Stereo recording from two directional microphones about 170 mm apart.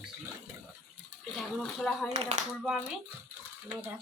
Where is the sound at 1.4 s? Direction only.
Centre (ahead or behind).